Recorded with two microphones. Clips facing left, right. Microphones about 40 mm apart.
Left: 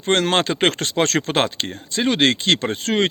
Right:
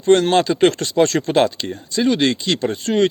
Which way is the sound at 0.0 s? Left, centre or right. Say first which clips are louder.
Right 4 dB; left.